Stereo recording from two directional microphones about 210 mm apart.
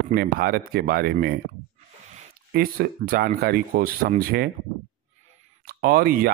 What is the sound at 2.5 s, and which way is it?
Speech, 45° right (ahead or behind).